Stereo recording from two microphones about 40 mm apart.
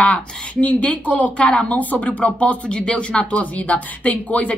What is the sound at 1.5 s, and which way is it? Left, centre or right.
Speech, left.